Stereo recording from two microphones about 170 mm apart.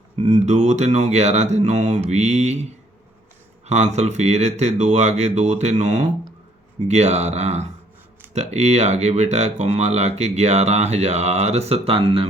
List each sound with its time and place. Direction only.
0.2 s speech: 40° right (ahead or behind)
3.7 s speech: 40° right (ahead or behind)